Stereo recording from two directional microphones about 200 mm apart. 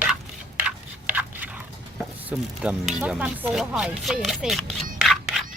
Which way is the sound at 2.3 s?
5° right (ahead or behind).